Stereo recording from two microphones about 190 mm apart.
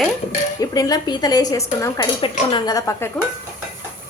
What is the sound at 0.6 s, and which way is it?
A woman's voice, 20° left (ahead or behind).